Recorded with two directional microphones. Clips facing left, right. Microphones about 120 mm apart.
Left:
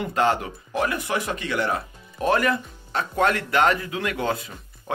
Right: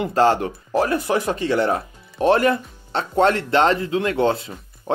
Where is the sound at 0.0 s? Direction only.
30° right (ahead or behind).